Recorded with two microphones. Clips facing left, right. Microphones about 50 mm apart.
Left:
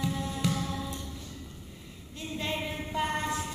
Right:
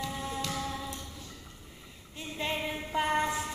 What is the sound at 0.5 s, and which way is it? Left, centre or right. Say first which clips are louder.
Music: left 3 dB; centre.